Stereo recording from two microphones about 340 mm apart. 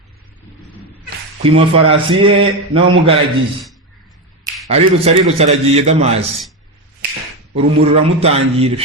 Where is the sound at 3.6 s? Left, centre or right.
Centre.